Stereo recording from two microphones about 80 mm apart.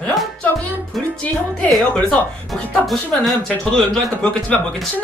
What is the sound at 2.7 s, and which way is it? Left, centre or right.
Speech, centre.